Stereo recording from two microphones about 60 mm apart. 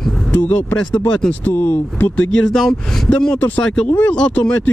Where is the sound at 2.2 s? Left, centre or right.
Centre.